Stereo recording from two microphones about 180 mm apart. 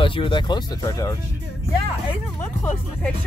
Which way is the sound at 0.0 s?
30° left (ahead or behind).